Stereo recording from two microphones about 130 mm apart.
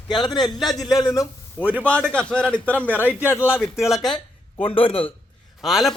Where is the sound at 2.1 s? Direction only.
10° left (ahead or behind).